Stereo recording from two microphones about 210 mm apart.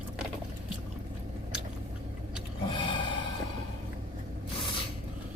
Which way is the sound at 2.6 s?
20° left (ahead or behind).